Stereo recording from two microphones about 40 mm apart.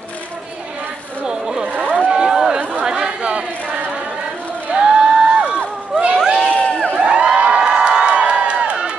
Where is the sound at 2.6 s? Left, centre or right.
Right.